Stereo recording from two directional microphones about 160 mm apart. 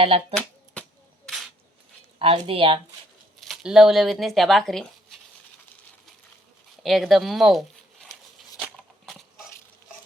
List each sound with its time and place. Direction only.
0.0 s a woman's voice: 35° right (ahead or behind)
0.3 s a sound: 5° left (ahead or behind)
2.1 s a woman's voice: 35° right (ahead or behind)
3.4 s speech: centre (ahead or behind)
6.8 s speech: centre (ahead or behind)
8.6 s a sound: centre (ahead or behind)